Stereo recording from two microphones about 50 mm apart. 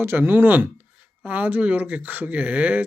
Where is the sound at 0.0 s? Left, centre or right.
Right.